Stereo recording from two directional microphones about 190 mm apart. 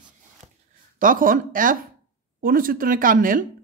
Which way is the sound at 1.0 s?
45° right (ahead or behind).